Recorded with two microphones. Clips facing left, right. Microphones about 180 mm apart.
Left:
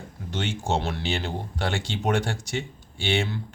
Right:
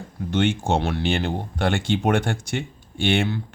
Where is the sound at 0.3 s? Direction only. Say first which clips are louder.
Right 6 dB; 55° right (ahead or behind).